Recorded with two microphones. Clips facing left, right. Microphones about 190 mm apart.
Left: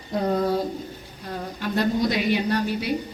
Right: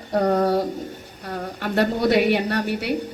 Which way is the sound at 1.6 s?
65° right (ahead or behind).